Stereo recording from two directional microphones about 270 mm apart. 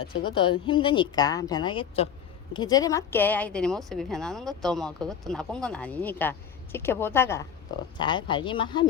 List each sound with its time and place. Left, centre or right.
0.3 s a woman's voice: centre